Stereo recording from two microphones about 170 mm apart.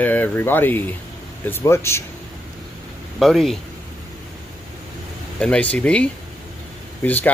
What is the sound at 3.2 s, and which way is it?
Speech, centre (ahead or behind).